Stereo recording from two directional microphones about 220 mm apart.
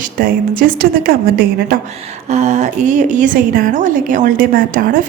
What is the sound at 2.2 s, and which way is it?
A woman's voice, 30° right (ahead or behind).